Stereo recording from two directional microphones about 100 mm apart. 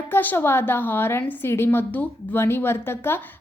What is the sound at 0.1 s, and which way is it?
A woman's voice, 20° left (ahead or behind).